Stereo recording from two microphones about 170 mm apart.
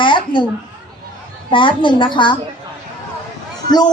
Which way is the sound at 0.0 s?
30° left (ahead or behind).